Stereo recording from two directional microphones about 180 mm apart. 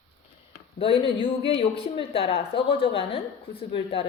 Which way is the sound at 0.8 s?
30° left (ahead or behind).